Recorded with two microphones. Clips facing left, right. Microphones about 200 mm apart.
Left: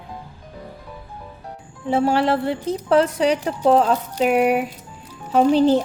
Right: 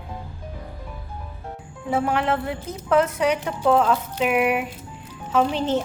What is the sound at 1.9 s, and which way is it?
Speech, 30° left (ahead or behind).